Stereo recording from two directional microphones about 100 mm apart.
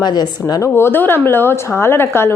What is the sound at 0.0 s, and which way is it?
Speech, 45° left (ahead or behind).